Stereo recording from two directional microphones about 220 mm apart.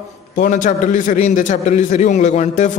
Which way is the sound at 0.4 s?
35° left (ahead or behind).